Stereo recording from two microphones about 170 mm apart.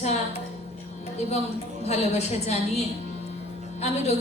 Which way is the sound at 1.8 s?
40° left (ahead or behind).